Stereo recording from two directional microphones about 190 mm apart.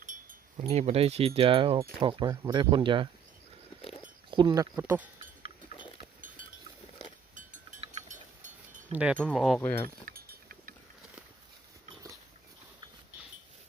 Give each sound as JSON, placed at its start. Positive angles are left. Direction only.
{"t": 0.0, "sound": "wind chime", "side_deg": -45}
{"t": 0.5, "sound": "speech", "side_deg": -30}
{"t": 3.8, "sound": "a sound", "side_deg": 30}
{"t": 4.3, "sound": "speech", "side_deg": -20}
{"t": 4.7, "sound": "speech", "side_deg": -10}
{"t": 7.3, "sound": "a sound", "side_deg": -40}
{"t": 8.9, "sound": "speech", "side_deg": -5}
{"t": 9.6, "sound": "speech", "side_deg": 10}
{"t": 10.1, "sound": "a sound", "side_deg": -50}